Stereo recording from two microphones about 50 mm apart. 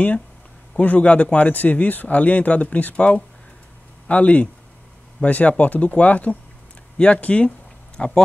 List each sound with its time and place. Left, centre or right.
0.7 s speech: left